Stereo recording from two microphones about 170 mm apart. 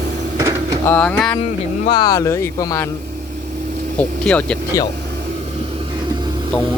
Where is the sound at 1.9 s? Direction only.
25° left (ahead or behind).